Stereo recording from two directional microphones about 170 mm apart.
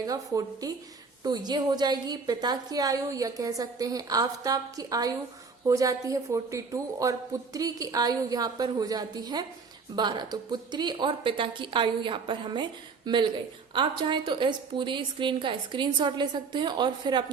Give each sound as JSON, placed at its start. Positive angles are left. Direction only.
{"t": 0.0, "sound": "a woman's voice", "side_deg": -20}